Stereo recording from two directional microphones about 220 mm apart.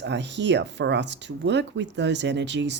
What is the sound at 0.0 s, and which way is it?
Speech, 55° right (ahead or behind).